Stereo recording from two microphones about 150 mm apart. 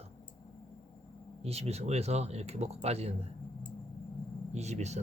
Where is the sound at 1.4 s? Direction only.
45° right (ahead or behind).